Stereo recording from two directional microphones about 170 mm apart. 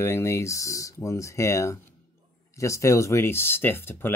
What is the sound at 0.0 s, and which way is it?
Speech, 15° left (ahead or behind).